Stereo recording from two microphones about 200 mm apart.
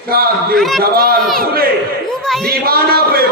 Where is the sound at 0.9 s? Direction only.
50° right (ahead or behind).